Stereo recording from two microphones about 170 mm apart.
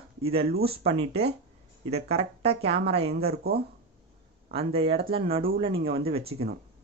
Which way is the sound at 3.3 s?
65° right (ahead or behind).